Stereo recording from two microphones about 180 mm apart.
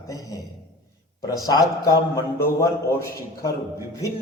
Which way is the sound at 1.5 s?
20° left (ahead or behind).